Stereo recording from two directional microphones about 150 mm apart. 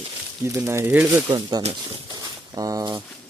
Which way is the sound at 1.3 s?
25° right (ahead or behind).